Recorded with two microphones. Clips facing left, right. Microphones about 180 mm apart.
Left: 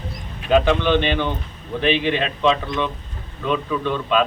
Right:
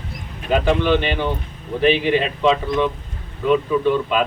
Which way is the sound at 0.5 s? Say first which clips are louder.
Left 1 dB; 5° right (ahead or behind).